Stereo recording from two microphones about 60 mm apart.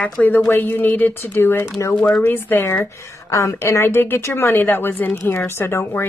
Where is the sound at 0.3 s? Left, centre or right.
Left.